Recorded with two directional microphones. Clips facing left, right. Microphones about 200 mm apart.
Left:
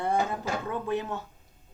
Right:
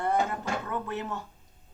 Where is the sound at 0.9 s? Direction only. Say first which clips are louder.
Left 4 dB; 15° left (ahead or behind).